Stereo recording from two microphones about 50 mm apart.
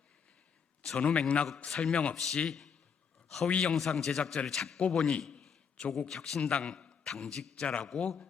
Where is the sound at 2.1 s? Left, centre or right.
Centre.